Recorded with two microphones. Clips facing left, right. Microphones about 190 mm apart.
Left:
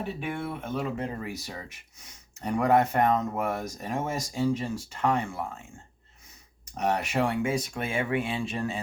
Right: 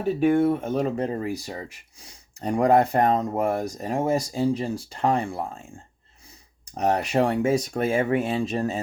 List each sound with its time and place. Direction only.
0.2 s speech: 40° right (ahead or behind)
6.7 s speech: 35° right (ahead or behind)